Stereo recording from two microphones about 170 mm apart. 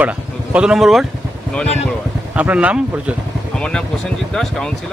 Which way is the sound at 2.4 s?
10° right (ahead or behind).